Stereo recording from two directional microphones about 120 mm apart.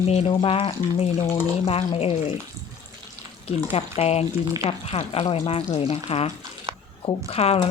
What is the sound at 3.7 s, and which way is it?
Speech, 60° left (ahead or behind).